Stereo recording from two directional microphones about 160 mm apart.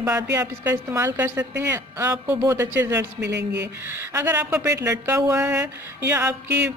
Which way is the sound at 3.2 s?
90° right.